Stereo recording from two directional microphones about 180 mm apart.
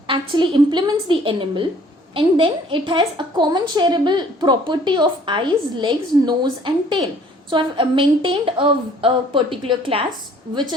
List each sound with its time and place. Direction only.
0.1 s a woman's voice: 25° right (ahead or behind)